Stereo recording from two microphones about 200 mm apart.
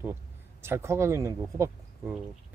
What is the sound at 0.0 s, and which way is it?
Speech, 10° right (ahead or behind).